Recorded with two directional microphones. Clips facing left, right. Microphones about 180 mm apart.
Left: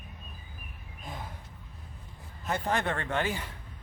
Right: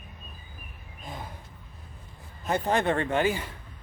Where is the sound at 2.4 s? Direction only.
20° right (ahead or behind).